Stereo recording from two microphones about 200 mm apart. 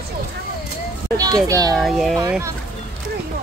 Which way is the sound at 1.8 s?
Centre (ahead or behind).